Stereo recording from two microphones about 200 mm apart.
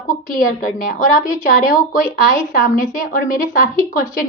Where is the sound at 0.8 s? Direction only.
45° left (ahead or behind).